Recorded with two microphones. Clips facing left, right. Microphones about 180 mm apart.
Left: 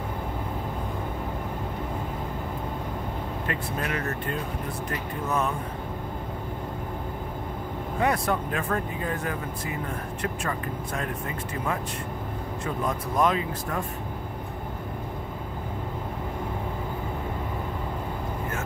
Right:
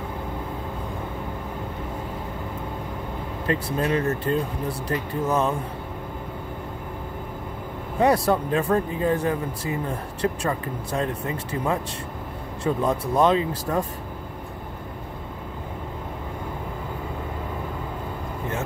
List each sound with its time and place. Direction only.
3.4 s speech: 30° right (ahead or behind)
8.0 s speech: 30° right (ahead or behind)
12.8 s speech: 30° right (ahead or behind)